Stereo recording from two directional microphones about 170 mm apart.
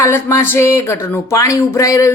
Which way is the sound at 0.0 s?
15° left (ahead or behind).